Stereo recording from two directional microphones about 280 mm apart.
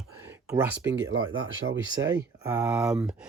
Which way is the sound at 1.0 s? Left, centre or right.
Right.